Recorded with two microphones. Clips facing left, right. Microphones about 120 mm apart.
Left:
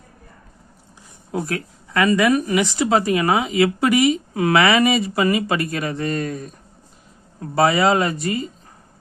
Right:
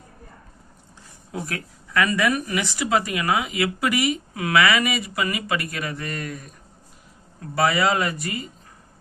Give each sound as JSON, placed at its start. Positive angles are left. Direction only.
{"t": 1.3, "sound": "a woman's voice", "side_deg": 30}
{"t": 7.5, "sound": "a woman's voice", "side_deg": 25}